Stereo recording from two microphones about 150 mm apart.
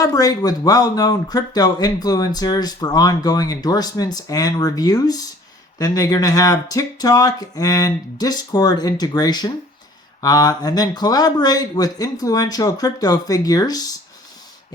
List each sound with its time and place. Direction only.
0.0 s speech: 25° left (ahead or behind)